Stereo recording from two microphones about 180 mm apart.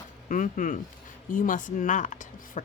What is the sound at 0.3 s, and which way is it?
Speech, 45° left (ahead or behind).